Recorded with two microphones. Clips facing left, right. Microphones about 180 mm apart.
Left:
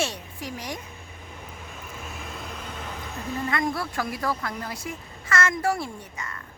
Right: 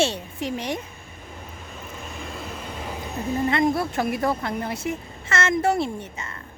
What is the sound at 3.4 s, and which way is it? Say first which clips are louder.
Speech: right 6 dB; 25° right (ahead or behind).